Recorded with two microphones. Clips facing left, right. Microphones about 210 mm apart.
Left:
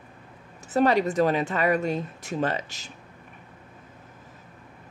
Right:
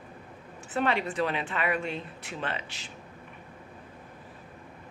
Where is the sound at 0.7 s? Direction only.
40° left (ahead or behind).